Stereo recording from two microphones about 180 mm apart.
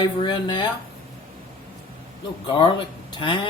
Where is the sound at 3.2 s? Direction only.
25° left (ahead or behind).